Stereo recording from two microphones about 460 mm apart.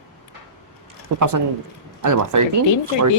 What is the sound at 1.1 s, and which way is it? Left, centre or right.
Speech, right.